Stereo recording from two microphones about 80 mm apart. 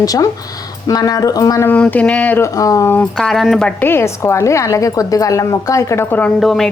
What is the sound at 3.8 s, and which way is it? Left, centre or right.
A woman's voice, left.